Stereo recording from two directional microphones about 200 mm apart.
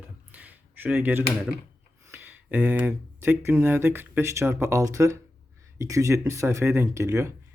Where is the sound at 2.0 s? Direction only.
10° right (ahead or behind).